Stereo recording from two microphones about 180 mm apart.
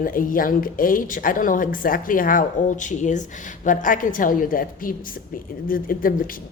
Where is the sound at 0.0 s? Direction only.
50° left (ahead or behind).